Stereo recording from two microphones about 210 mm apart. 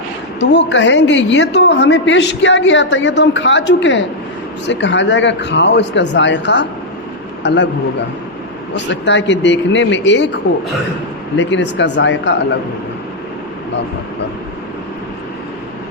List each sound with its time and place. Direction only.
0.3 s a woman's voice: 55° left (ahead or behind)
8.7 s a woman's voice: 55° left (ahead or behind)
11.3 s a woman's voice: 60° left (ahead or behind)